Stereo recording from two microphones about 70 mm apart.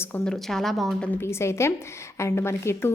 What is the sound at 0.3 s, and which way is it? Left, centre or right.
Speech, centre.